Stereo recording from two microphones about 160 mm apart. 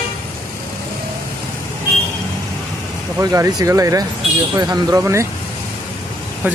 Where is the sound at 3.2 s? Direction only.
20° right (ahead or behind).